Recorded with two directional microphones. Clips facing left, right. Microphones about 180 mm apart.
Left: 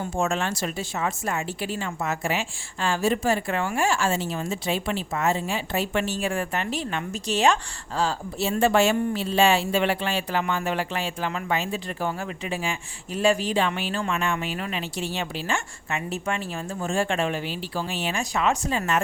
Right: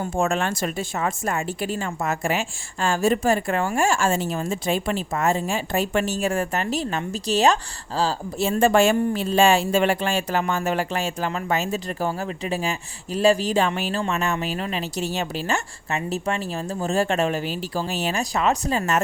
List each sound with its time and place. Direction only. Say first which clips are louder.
0.0 s a woman's voice: right 3 dB; 55° right (ahead or behind); by 8.1 s 35° right (ahead or behind)
8.4 s a woman's voice: right 3 dB; 50° right (ahead or behind)